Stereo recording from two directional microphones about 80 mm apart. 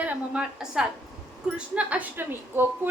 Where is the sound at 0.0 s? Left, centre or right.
Centre.